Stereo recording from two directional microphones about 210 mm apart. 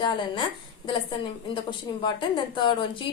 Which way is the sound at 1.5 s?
20° left (ahead or behind).